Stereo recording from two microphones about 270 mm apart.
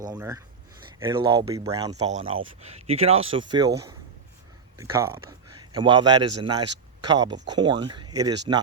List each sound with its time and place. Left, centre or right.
0.1 s speech: centre
4.8 s a man's voice: centre